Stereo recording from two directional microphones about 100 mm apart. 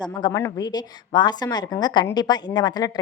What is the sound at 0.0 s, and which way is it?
A woman's voice, 45° left (ahead or behind).